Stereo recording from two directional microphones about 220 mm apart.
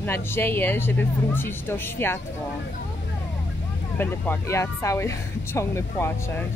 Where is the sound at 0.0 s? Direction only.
10° left (ahead or behind).